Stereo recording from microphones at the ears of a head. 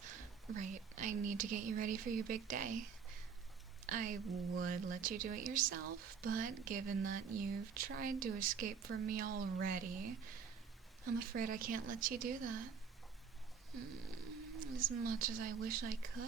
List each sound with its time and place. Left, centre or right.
0.0 s speech: right
13.7 s speech: right